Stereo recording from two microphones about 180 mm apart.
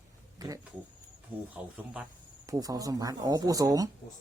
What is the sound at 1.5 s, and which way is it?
Speech, 5° right (ahead or behind).